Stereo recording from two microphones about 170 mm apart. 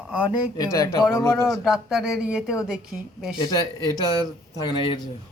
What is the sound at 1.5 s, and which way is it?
A woman's voice, centre (ahead or behind).